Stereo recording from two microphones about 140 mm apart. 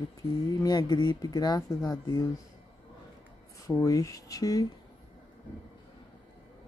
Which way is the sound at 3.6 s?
20° left (ahead or behind).